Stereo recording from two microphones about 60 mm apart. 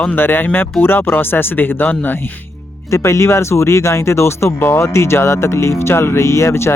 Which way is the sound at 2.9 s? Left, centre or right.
Left.